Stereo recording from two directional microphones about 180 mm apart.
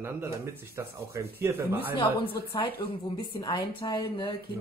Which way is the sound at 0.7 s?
15° right (ahead or behind).